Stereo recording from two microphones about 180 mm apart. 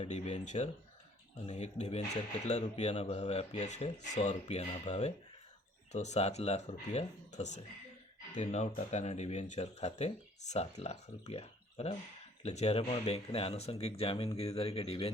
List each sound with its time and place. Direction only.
0.0 s speech: 40° left (ahead or behind)
8.4 s speech: 40° left (ahead or behind)